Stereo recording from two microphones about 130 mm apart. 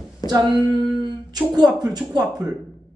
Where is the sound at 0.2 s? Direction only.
30° left (ahead or behind).